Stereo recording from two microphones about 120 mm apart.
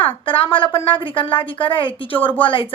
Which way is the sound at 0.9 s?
45° left (ahead or behind).